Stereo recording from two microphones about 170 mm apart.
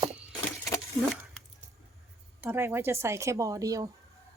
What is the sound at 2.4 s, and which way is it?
Speech, 15° right (ahead or behind).